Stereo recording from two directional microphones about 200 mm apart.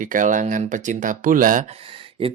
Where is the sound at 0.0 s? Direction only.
40° right (ahead or behind).